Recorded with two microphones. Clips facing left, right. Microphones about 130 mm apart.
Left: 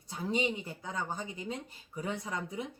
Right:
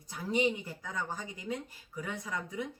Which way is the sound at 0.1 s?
25° left (ahead or behind).